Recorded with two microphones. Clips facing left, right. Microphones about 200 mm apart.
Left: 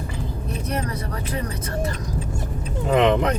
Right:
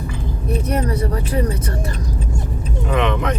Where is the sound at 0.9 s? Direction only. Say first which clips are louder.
Right 7 dB; 30° right (ahead or behind).